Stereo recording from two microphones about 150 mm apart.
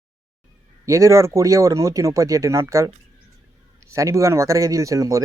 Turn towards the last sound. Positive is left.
turn(degrees=-20)  # may be behind; listen again after turning